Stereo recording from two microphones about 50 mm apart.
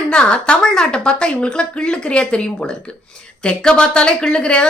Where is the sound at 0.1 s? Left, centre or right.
Centre.